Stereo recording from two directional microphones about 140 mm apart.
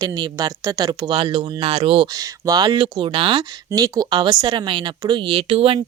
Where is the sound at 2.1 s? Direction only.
25° right (ahead or behind).